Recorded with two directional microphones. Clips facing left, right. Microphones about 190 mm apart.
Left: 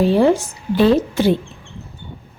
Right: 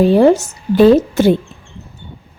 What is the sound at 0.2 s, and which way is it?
A woman's voice, 45° right (ahead or behind).